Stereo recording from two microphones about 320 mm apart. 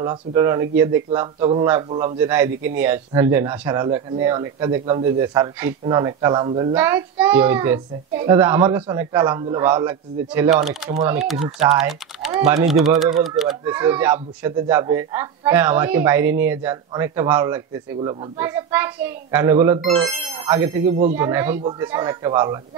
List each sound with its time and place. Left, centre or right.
0.0 s speech: centre
12.6 s speech: centre